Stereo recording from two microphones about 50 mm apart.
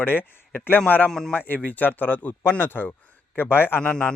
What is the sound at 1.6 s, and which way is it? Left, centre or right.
A man's voice, left.